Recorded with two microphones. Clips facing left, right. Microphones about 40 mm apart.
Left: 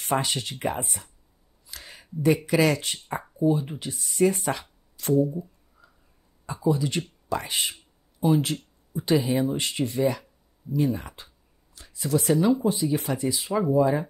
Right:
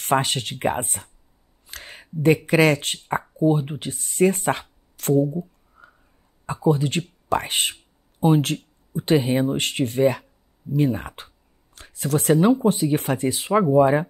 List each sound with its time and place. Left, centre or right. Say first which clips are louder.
0.0 s speech: right 5 dB; right
5.1 s a sound: right 3 dB; right
6.4 s speech: right 4 dB; right